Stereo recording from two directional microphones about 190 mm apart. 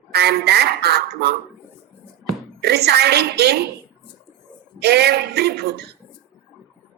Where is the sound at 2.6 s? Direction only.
60° right (ahead or behind).